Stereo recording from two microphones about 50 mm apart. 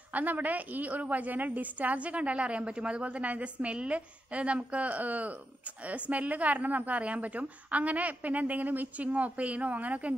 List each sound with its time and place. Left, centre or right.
0.1 s a woman's voice: right